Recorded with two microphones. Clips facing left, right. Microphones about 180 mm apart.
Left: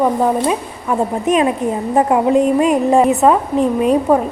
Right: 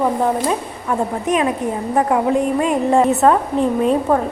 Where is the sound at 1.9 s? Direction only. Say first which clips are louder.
Left 3 dB; 20° left (ahead or behind).